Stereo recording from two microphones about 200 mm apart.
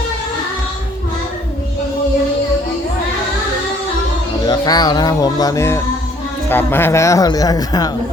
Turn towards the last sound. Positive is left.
turn(degrees=20)  # may be behind; listen again after turning